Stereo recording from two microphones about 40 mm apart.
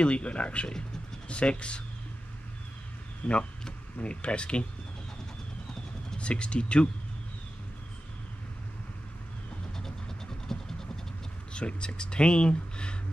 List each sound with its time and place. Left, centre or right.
0.0 s speech: left
3.2 s speech: left
6.1 s speech: left
9.8 s vehicle: centre
11.5 s speech: left